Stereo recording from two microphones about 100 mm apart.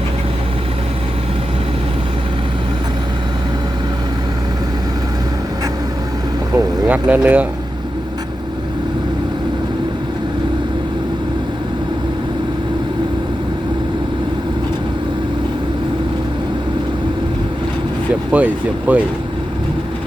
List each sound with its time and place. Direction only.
6.8 s speech: 15° right (ahead or behind)
18.3 s speech: 15° right (ahead or behind)